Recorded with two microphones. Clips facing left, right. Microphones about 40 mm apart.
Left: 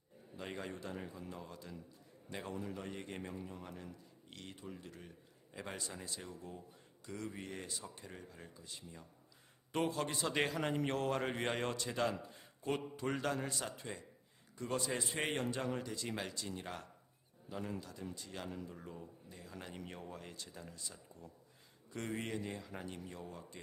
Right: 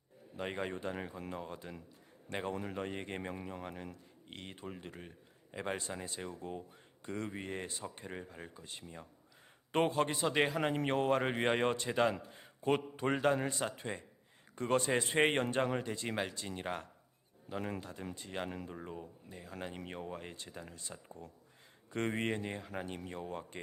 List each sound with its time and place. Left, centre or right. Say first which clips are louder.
0.3 s speech: right 6 dB; right
3.3 s speech: right 4 dB; right
10.2 s a man's voice: right 2 dB; centre; by 23.6 s right